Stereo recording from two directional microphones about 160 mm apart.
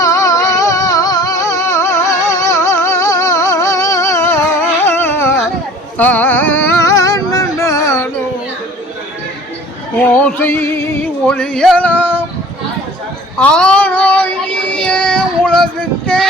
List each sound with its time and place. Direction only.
0.0 s music: 20° left (ahead or behind)
4.9 s carnatic music: 15° left (ahead or behind)
6.0 s music: 10° left (ahead or behind)
10.1 s music: 10° left (ahead or behind)
13.4 s child singing: 5° left (ahead or behind)